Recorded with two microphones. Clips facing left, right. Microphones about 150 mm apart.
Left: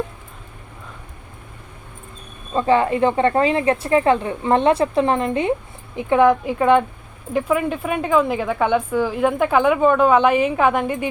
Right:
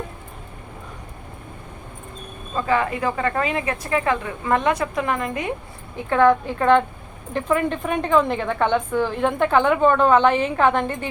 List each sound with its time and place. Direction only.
2.6 s speech: 30° left (ahead or behind)
6.0 s a woman's voice: 15° left (ahead or behind)